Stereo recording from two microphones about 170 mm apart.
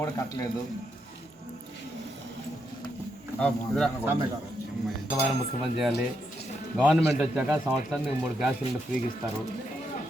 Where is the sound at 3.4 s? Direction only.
5° left (ahead or behind).